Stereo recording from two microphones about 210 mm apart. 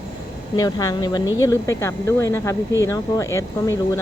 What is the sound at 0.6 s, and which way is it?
Speech, 15° left (ahead or behind).